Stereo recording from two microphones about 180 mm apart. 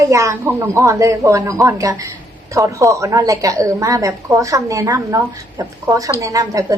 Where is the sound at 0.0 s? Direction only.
15° right (ahead or behind).